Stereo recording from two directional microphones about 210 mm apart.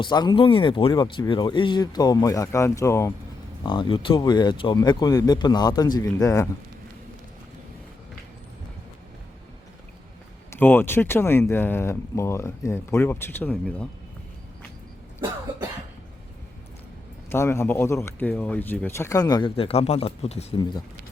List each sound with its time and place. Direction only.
0.0 s speech: 20° left (ahead or behind)
10.5 s speech: 10° left (ahead or behind)
17.2 s speech: 10° left (ahead or behind)